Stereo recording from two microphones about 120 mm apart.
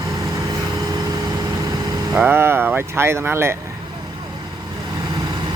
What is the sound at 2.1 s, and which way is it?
Speech, 15° right (ahead or behind).